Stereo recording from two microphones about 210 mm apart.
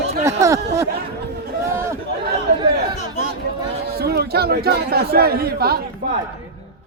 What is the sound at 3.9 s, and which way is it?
A man's voice, 50° right (ahead or behind).